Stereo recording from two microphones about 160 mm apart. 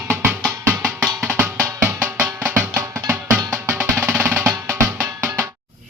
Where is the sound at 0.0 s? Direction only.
15° right (ahead or behind).